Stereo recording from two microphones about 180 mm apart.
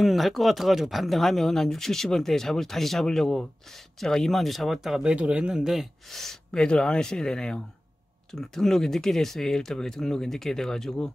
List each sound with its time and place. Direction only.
0.0 s speech: centre (ahead or behind)